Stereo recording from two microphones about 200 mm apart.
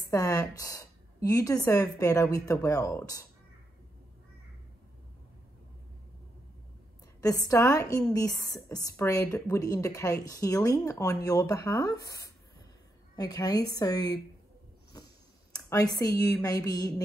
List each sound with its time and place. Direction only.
0.1 s a woman's voice: 15° left (ahead or behind)
7.2 s a woman's voice: 15° left (ahead or behind)
14.9 s a sound: 20° left (ahead or behind)
15.7 s a woman's voice: 15° left (ahead or behind)